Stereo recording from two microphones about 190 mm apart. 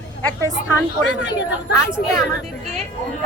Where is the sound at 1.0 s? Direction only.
70° left (ahead or behind).